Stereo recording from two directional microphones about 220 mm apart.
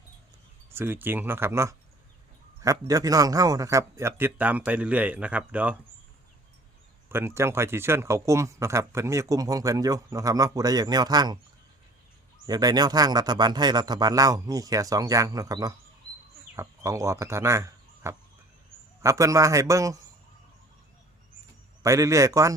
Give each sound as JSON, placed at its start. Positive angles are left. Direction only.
{"t": 0.7, "sound": "speech", "side_deg": -10}
{"t": 7.1, "sound": "speech", "side_deg": -10}
{"t": 12.5, "sound": "speech", "side_deg": -15}
{"t": 21.8, "sound": "speech", "side_deg": -15}